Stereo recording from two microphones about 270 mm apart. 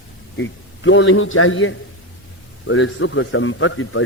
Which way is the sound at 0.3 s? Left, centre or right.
Left.